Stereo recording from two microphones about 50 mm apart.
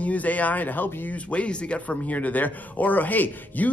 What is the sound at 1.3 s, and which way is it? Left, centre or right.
Speech, left.